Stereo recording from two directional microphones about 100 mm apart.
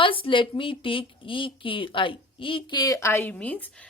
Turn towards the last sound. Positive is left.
turn(degrees=15)  # may be behind; listen again after turning